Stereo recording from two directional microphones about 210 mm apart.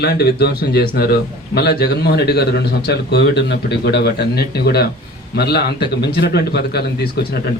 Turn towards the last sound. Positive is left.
turn(degrees=50)  # may be behind; listen again after turning